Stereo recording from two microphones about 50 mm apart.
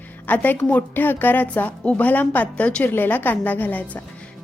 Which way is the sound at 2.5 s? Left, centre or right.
Left.